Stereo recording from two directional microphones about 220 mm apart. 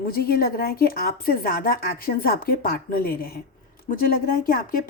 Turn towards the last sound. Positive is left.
turn(degrees=40)  # may be behind; listen again after turning